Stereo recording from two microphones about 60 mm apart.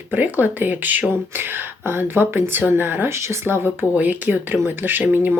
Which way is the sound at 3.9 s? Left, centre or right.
Right.